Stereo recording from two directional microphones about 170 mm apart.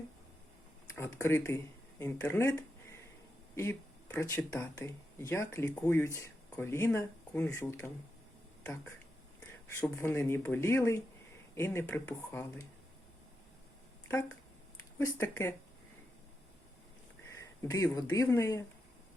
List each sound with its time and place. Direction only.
0.9 s speech: 15° left (ahead or behind)
14.9 s speech: 15° left (ahead or behind)
17.2 s speech: 15° left (ahead or behind)